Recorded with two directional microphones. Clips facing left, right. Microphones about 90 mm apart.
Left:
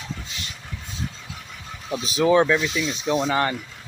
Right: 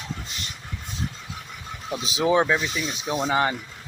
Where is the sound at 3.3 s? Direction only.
15° right (ahead or behind).